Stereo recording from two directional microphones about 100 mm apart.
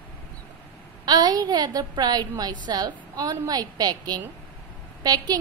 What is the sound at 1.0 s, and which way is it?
A woman's voice, 40° right (ahead or behind).